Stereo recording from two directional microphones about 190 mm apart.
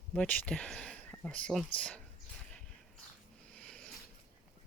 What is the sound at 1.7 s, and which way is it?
Speech, 5° left (ahead or behind).